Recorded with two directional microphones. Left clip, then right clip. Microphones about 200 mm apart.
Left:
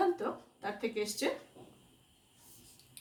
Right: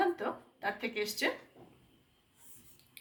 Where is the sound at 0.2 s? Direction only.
30° right (ahead or behind).